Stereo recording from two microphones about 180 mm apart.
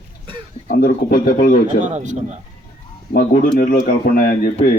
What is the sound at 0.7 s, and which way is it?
A man's voice, 50° left (ahead or behind).